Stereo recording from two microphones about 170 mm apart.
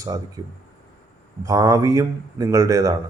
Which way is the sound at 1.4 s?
20° right (ahead or behind).